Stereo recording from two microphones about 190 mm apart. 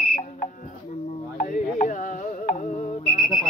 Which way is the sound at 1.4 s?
45° left (ahead or behind).